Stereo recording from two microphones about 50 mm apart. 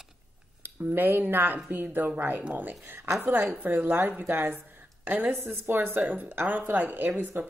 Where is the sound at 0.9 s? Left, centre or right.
Right.